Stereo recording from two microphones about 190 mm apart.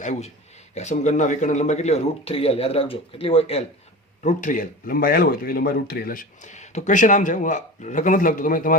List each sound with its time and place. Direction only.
0.0 s speech: 40° left (ahead or behind)